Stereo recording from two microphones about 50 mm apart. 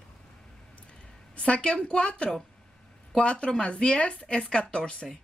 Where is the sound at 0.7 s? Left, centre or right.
Left.